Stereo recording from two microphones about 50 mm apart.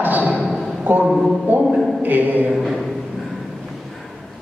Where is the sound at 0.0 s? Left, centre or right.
Right.